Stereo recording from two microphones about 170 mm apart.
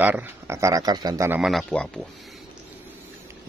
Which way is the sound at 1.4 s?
Centre (ahead or behind).